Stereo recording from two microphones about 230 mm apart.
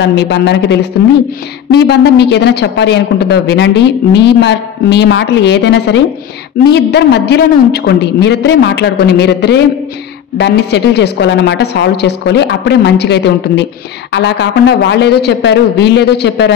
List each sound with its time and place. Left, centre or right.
0.0 s a woman's voice: left